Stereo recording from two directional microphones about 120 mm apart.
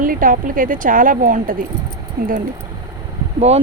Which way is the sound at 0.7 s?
90° right.